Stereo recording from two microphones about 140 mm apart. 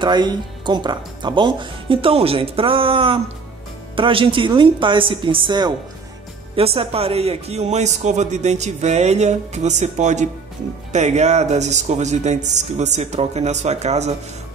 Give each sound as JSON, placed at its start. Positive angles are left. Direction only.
{"t": 0.0, "sound": "a man's voice", "side_deg": -30}